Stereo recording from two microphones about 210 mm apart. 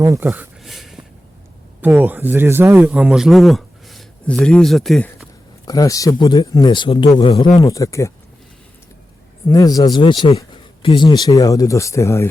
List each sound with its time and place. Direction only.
0.0 s speech: 15° right (ahead or behind)
0.6 s a sound: centre (ahead or behind)
1.8 s a man's voice: 10° right (ahead or behind)
5.6 s a man's voice: 15° left (ahead or behind)
9.5 s a man's voice: 15° left (ahead or behind)